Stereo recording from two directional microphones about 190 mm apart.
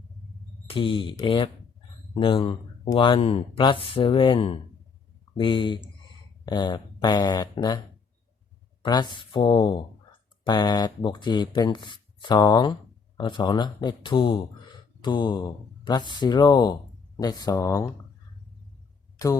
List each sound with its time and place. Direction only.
0.7 s speech: 25° left (ahead or behind)
8.8 s speech: 25° left (ahead or behind)